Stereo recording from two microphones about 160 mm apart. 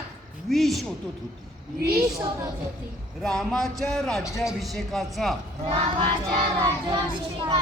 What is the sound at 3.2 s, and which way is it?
Speech, 5° left (ahead or behind).